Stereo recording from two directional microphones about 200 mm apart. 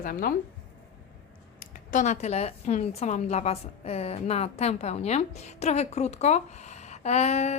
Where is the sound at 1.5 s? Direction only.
40° left (ahead or behind).